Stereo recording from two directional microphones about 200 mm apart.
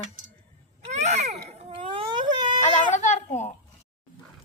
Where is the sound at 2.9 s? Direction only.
35° left (ahead or behind).